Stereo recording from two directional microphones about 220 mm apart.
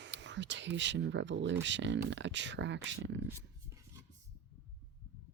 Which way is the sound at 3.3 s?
10° right (ahead or behind).